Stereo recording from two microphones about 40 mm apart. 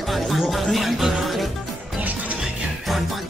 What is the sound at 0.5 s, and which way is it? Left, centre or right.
Speech, centre.